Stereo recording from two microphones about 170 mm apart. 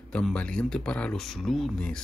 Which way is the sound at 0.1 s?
5° left (ahead or behind).